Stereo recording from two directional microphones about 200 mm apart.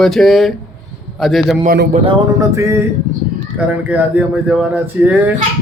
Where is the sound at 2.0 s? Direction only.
15° right (ahead or behind).